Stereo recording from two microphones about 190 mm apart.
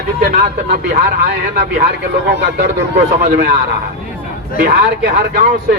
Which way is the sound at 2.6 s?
60° right (ahead or behind).